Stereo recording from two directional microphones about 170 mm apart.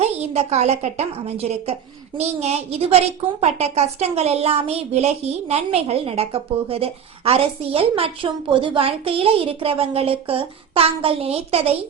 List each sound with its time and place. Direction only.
0.0 s a woman's voice: 40° right (ahead or behind)